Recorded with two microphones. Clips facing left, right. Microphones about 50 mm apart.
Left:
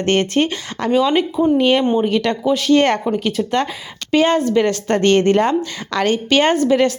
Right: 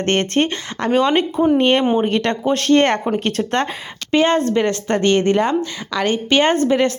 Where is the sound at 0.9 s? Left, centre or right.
Right.